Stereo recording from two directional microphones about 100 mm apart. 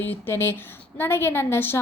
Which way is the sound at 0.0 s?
20° left (ahead or behind).